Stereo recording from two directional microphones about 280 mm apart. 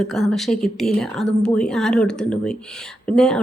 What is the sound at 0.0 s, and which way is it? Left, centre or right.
Speech, centre.